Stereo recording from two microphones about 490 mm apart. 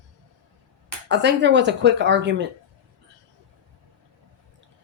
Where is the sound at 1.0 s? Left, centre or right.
Right.